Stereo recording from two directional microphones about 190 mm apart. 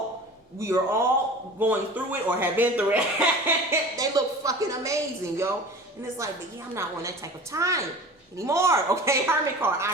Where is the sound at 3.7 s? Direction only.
20° right (ahead or behind).